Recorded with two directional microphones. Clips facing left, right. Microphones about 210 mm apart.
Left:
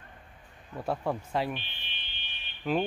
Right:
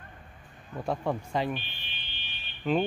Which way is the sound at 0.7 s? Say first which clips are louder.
Right 1 dB; 5° left (ahead or behind).